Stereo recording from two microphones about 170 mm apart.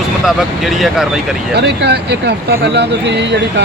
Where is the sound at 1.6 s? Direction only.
75° right (ahead or behind).